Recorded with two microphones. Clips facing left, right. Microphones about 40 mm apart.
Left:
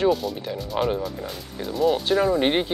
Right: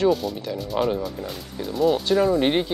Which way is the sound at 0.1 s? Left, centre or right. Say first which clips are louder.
Right 1 dB; centre.